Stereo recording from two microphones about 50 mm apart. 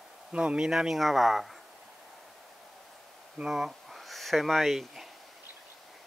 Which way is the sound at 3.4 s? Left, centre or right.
Centre.